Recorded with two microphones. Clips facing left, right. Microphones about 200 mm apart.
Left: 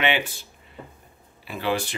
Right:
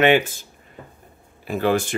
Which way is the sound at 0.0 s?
45° right (ahead or behind).